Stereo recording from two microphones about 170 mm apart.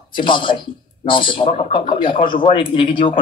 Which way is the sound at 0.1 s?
30° left (ahead or behind).